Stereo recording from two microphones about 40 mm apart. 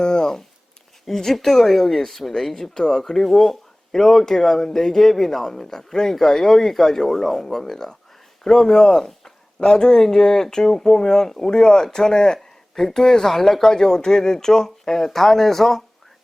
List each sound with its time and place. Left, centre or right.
0.0 s a sound: centre
1.0 s speech: centre
8.7 s chopping: centre
9.6 s speech: centre